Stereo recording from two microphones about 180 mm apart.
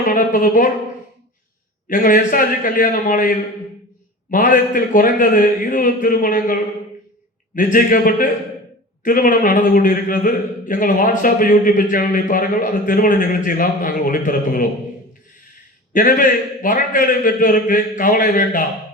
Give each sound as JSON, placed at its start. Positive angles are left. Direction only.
{"t": 0.1, "sound": "a man's voice", "side_deg": 50}
{"t": 1.9, "sound": "a man's voice", "side_deg": 50}
{"t": 15.9, "sound": "a man's voice", "side_deg": 50}